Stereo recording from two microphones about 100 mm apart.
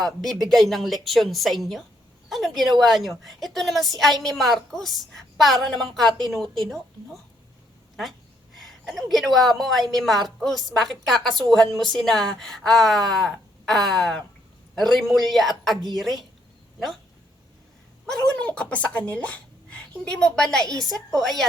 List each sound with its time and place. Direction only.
0.0 s a woman's voice: centre (ahead or behind)
8.5 s a woman's voice: centre (ahead or behind)
18.3 s speech: 10° left (ahead or behind)
20.7 s a woman's voice: 35° right (ahead or behind)
21.2 s a woman's voice: centre (ahead or behind)